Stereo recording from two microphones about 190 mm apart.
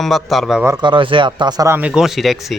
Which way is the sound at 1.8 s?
5° right (ahead or behind).